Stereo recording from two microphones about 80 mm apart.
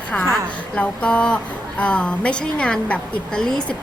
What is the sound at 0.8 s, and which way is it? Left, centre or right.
A woman's voice, centre.